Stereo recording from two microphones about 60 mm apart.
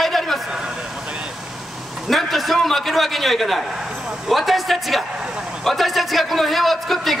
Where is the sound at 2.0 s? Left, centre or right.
Centre.